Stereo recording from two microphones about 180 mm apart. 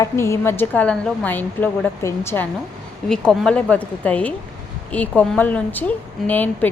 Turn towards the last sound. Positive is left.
turn(degrees=10)  # may be behind; listen again after turning